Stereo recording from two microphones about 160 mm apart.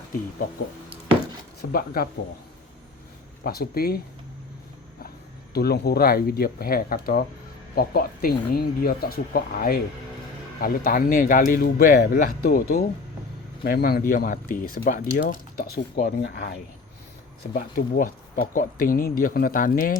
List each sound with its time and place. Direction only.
1.7 s speech: 65° left (ahead or behind)
3.4 s speech: 70° left (ahead or behind)
5.5 s speech: 80° left
17.5 s speech: 65° left (ahead or behind)